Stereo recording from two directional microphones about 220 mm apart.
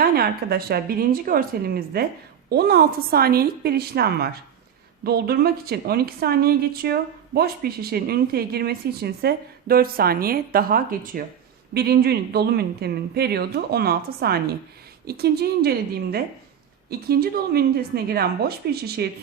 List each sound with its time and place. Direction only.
0.0 s a woman's voice: 45° right (ahead or behind)
17.1 s a woman's voice: 45° right (ahead or behind)